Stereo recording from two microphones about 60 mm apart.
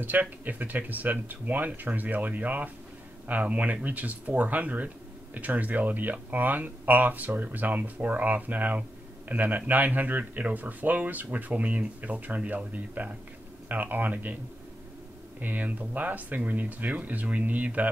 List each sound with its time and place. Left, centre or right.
0.0 s speech: right
15.4 s speech: right